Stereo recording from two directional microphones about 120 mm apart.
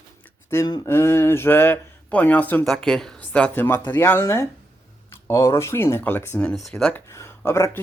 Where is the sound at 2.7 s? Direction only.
Centre (ahead or behind); by 6.4 s 20° left (ahead or behind).